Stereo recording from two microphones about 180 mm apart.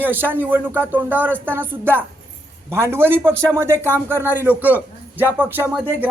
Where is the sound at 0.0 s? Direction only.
10° right (ahead or behind).